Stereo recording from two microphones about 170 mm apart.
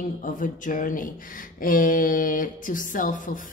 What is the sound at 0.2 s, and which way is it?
Speech, 50° left (ahead or behind).